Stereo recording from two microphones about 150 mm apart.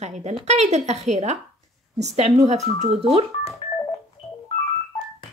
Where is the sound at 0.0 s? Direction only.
50° right (ahead or behind).